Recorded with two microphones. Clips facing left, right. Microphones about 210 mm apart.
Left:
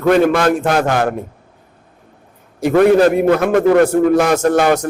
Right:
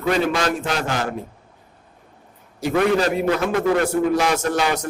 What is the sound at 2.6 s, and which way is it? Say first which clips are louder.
A man's voice: left 8 dB; 50° left (ahead or behind).